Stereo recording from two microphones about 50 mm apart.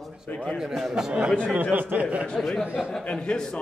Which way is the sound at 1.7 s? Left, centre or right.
Right.